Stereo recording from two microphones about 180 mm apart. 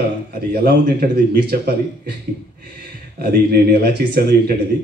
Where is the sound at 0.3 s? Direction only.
60° right (ahead or behind).